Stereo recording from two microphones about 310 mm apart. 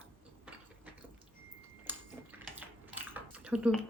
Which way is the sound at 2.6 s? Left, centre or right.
Centre.